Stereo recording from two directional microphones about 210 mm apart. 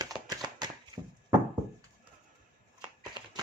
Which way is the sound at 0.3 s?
20° right (ahead or behind).